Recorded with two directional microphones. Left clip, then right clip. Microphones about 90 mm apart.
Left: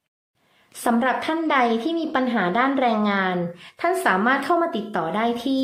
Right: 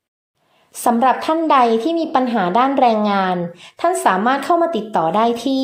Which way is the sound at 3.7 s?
25° right (ahead or behind).